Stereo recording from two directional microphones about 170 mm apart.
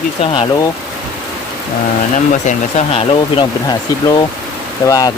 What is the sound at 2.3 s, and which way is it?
Speech, 45° left (ahead or behind).